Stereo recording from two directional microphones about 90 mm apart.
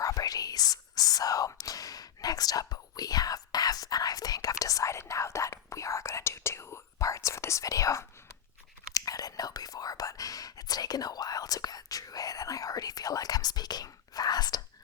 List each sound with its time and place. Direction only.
0.0 s speech: 40° left (ahead or behind)